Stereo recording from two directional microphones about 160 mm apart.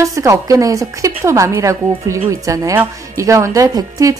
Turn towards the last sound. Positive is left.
turn(degrees=-20)  # may be behind; listen again after turning